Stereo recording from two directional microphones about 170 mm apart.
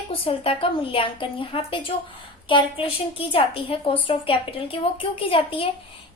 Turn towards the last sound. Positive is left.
turn(degrees=30)  # may be behind; listen again after turning